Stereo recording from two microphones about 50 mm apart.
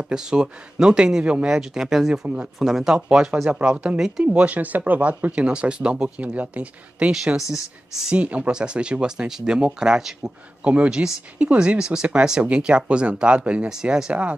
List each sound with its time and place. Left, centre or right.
0.1 s speech: centre
7.5 s speech: centre
8.2 s speech: right; by 10.3 s centre
10.6 s speech: right
13.7 s speech: centre